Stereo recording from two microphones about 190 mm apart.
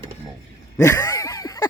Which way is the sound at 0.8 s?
15° left (ahead or behind).